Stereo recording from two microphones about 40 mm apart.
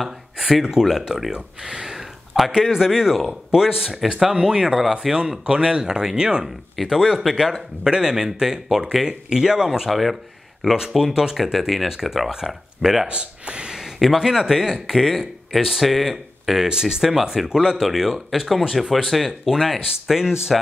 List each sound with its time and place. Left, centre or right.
0.0 s a man's voice: centre
4.6 s a man's voice: centre
6.4 s a man's voice: centre
9.8 s a man's voice: centre
13.1 s a sound: right
13.9 s a man's voice: centre
16.6 s a man's voice: centre